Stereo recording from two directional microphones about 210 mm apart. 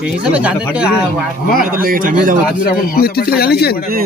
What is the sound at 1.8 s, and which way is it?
Speech, 40° right (ahead or behind).